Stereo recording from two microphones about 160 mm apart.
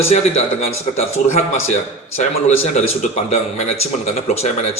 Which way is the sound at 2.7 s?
45° left (ahead or behind).